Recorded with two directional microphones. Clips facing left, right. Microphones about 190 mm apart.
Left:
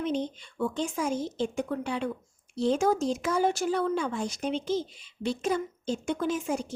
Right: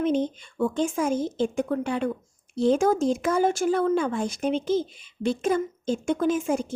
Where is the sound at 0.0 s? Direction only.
50° right (ahead or behind).